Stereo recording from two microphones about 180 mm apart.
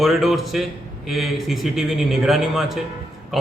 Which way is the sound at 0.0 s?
Centre (ahead or behind).